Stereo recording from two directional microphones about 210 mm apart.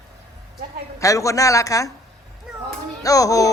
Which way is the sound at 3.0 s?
15° left (ahead or behind).